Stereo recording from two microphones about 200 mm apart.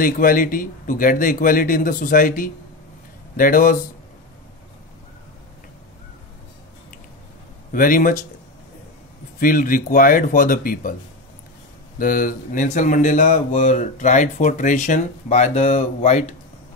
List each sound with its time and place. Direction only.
0.0 s speech: 45° left (ahead or behind)
7.7 s speech: 45° left (ahead or behind)
9.4 s speech: 45° left (ahead or behind)
12.0 s speech: 45° left (ahead or behind)